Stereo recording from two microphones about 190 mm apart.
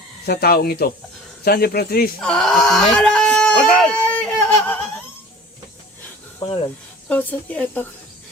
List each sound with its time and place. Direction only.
0.3 s speech: 55° left (ahead or behind)
2.2 s a sound: centre (ahead or behind)
7.1 s speech: 10° left (ahead or behind)